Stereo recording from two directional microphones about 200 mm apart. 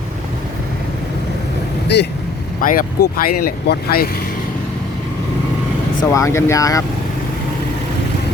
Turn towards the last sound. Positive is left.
turn(degrees=15)  # may be behind; listen again after turning